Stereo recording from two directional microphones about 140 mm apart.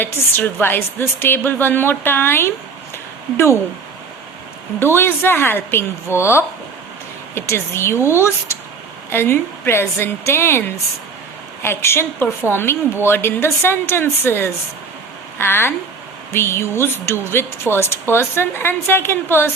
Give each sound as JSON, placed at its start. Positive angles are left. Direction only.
{"t": 0.0, "sound": "a woman's voice", "side_deg": 15}
{"t": 4.8, "sound": "a woman's voice", "side_deg": 15}